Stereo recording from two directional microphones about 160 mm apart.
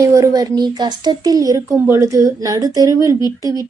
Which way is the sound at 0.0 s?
20° right (ahead or behind).